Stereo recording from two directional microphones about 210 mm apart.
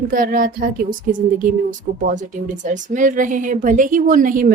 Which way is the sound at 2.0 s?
35° right (ahead or behind).